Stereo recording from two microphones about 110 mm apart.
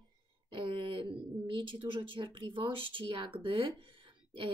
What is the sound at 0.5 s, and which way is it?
A woman's voice, 50° right (ahead or behind).